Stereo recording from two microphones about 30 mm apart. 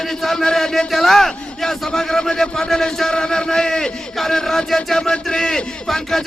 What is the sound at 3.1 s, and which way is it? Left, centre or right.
Chant, left.